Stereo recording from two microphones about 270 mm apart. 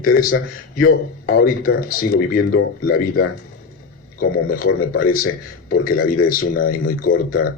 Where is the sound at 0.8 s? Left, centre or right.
Left.